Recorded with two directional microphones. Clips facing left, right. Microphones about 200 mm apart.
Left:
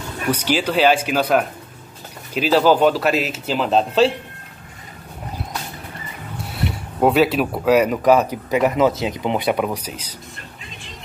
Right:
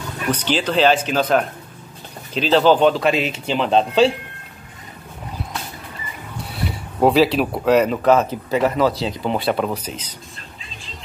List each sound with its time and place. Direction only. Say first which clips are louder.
0.3 s speech: left 1 dB; 10° left (ahead or behind)
6.5 s speech: left 2 dB; centre (ahead or behind)